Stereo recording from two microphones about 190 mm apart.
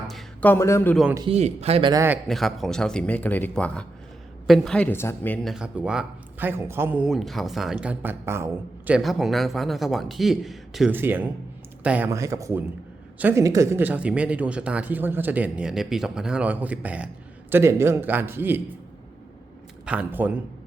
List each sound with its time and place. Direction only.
0.1 s a sound: centre (ahead or behind)
0.5 s a man's voice: 15° left (ahead or behind)
1.3 s speech: 35° right (ahead or behind)
2.0 s a woman's voice: centre (ahead or behind)
8.9 s a woman's voice: centre (ahead or behind)
19.8 s speech: 5° right (ahead or behind)